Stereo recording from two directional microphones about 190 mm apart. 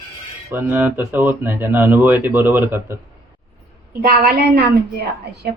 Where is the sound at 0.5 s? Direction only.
10° right (ahead or behind).